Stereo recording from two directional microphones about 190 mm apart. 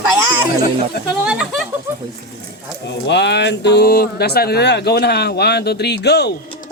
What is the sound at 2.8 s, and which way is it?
Speech, 65° left (ahead or behind).